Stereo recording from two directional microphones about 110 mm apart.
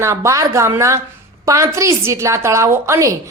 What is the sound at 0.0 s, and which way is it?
A woman's voice, 25° right (ahead or behind).